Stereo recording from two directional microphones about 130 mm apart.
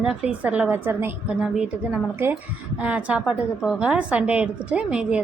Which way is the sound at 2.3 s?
10° right (ahead or behind).